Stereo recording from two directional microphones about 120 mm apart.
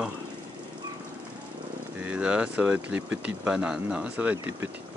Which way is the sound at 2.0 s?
10° right (ahead or behind).